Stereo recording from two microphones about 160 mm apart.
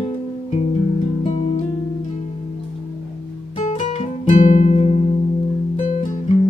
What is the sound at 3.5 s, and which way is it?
Music, 45° left (ahead or behind).